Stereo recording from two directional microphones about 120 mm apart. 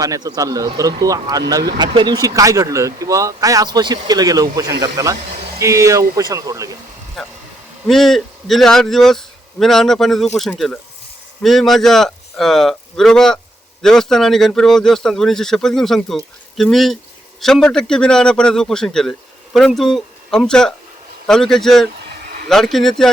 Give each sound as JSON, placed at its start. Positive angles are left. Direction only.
{"t": 0.0, "sound": "speech", "side_deg": -30}
{"t": 7.2, "sound": "speech", "side_deg": 0}
{"t": 11.4, "sound": "speech", "side_deg": 5}